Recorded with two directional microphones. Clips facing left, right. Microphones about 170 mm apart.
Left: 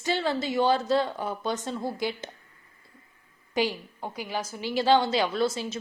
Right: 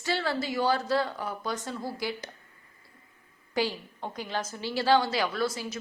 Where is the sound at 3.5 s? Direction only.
15° left (ahead or behind).